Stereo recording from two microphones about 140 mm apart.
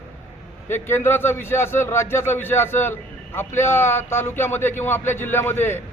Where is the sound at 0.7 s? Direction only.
15° left (ahead or behind).